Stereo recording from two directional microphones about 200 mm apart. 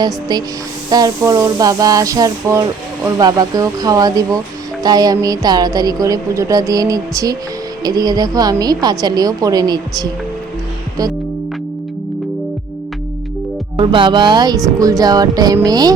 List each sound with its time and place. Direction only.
0.0 s a woman's voice: 20° right (ahead or behind)
0.9 s a sound: 20° right (ahead or behind)
7.9 s a woman's voice: 20° right (ahead or behind)
13.7 s a woman's voice: 25° right (ahead or behind)